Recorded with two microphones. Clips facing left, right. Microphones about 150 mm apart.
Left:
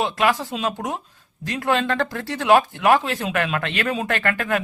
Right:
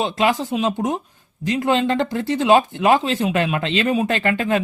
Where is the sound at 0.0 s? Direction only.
25° right (ahead or behind).